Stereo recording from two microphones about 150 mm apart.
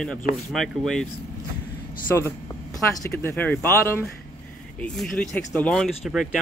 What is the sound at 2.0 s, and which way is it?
Speech, 15° left (ahead or behind).